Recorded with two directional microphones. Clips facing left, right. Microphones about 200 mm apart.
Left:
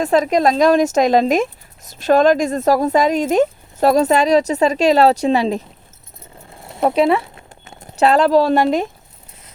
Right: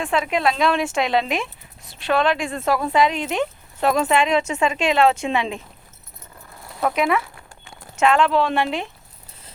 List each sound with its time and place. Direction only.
0.0 s speech: 40° left (ahead or behind)
6.6 s clip-clop: 25° left (ahead or behind)
8.0 s speech: 35° left (ahead or behind)